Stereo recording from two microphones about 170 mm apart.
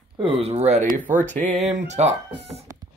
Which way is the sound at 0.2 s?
35° right (ahead or behind).